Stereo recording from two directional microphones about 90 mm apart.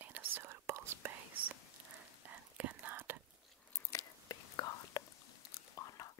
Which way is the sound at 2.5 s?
20° right (ahead or behind).